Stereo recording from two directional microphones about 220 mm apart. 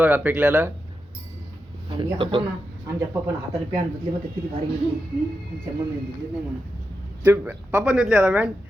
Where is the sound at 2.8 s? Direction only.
15° right (ahead or behind).